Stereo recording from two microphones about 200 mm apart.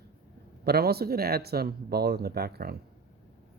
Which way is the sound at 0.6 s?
50° right (ahead or behind).